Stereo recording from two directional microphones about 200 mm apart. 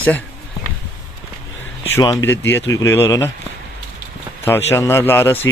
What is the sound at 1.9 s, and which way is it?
Speech, 15° left (ahead or behind).